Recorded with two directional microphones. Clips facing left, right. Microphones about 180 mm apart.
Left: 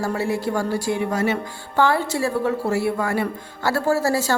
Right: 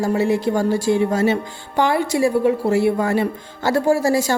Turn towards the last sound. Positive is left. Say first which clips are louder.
# right 3 dB
turn(degrees=-15)  # may be behind; listen again after turning